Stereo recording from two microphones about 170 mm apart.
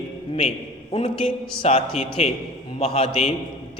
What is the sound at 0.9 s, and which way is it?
A man's voice, 35° left (ahead or behind).